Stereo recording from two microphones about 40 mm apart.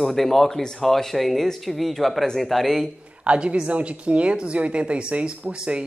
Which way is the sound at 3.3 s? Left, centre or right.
Right.